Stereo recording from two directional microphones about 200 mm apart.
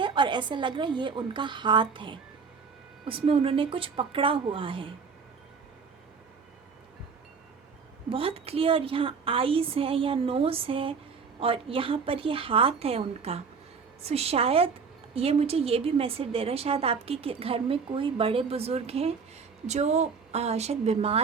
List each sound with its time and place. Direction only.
0.0 s a woman's voice: 25° right (ahead or behind)
8.1 s a woman's voice: 30° right (ahead or behind)